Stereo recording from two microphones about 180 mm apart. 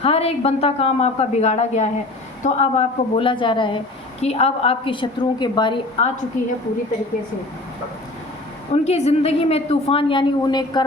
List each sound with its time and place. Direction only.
0.0 s a woman's voice: 35° left (ahead or behind)
8.7 s a woman's voice: 35° left (ahead or behind)